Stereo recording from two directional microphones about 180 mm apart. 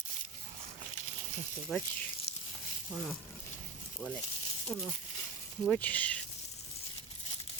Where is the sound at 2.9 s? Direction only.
Centre (ahead or behind).